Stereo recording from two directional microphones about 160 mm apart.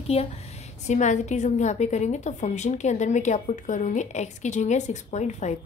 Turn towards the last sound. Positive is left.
turn(degrees=45)  # may be behind; listen again after turning